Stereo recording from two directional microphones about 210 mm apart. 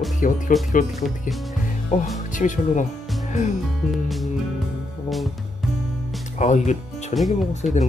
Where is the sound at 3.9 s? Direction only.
Centre (ahead or behind).